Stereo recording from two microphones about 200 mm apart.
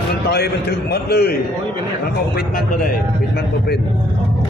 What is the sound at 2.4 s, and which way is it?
Speech, 45° left (ahead or behind).